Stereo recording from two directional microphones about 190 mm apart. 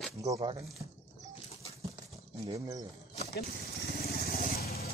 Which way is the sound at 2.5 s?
20° right (ahead or behind).